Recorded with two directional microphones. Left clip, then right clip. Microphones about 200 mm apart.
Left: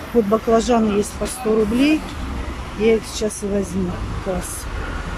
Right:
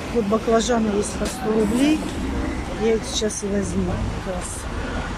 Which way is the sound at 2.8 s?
Centre (ahead or behind).